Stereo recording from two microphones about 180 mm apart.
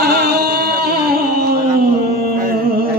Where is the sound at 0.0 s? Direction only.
65° right (ahead or behind).